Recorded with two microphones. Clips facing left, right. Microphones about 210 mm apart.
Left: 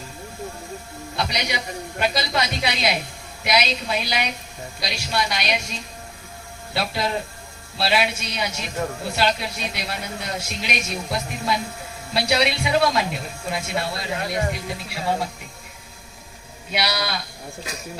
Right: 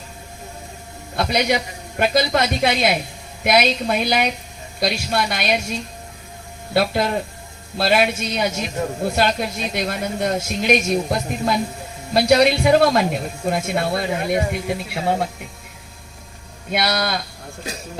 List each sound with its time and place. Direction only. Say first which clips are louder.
1.1 s a man's voice: right 7 dB; 50° right (ahead or behind)
6.7 s speech: right 6 dB; 50° right (ahead or behind)
16.7 s speech: right 4 dB; 50° right (ahead or behind)